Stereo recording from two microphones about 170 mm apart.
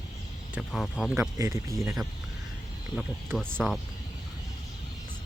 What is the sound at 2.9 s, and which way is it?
Speech, centre (ahead or behind).